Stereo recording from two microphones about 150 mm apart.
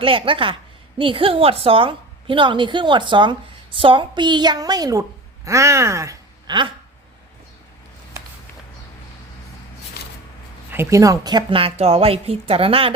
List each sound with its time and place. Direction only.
0.0 s a woman's voice: 35° right (ahead or behind)
10.7 s a woman's voice: 15° right (ahead or behind); by 12.9 s 40° right (ahead or behind)